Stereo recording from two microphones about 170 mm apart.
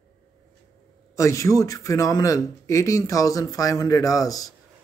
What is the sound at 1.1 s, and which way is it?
A man's voice, 15° left (ahead or behind).